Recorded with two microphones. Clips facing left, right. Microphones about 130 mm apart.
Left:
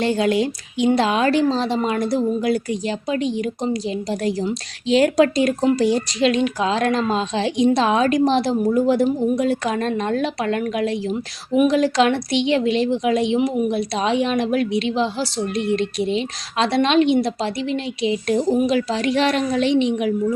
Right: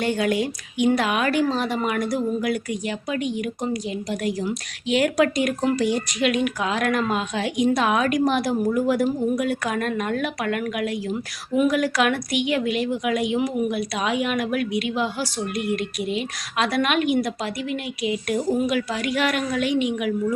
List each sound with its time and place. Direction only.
0.0 s a woman's voice: 30° left (ahead or behind)